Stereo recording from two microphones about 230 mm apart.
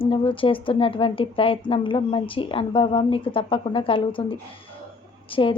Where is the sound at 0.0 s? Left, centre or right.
Left.